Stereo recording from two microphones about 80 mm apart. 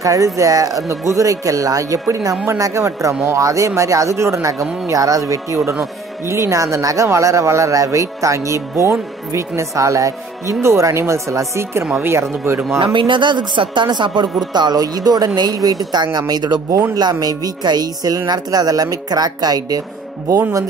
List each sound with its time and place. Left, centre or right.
0.0 s speech: right
12.8 s speech: right
14.5 s a woman's voice: right